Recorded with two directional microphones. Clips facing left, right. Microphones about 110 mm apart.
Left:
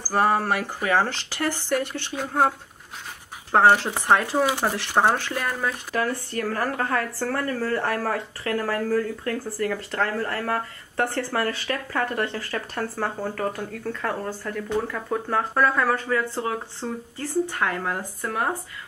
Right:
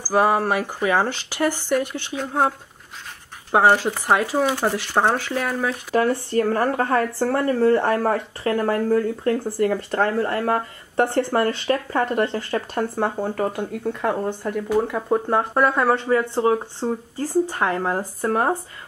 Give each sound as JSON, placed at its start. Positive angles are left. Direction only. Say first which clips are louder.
{"t": 0.1, "sound": "speech", "louder": "right 3 dB", "side_deg": -10}
{"t": 2.1, "sound": "speech", "louder": "right 1 dB", "side_deg": 0}
{"t": 3.5, "sound": "speech", "louder": "right 1 dB", "side_deg": -10}
{"t": 5.9, "sound": "speech", "louder": "right 9 dB", "side_deg": -25}
{"t": 16.2, "sound": "speech", "louder": "right 7 dB", "side_deg": -35}